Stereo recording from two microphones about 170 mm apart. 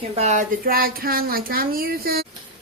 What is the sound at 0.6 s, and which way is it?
Speech, 60° right (ahead or behind).